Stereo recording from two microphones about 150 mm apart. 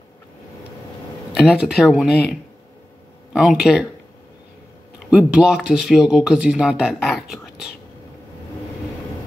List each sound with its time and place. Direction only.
1.4 s speech: 5° right (ahead or behind)
3.3 s speech: 5° right (ahead or behind)
5.1 s speech: 5° right (ahead or behind)